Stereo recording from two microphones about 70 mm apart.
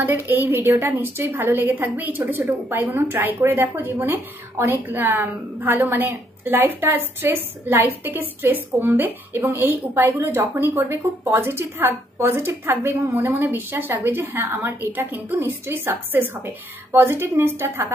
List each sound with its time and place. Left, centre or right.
0.0 s a woman's voice: right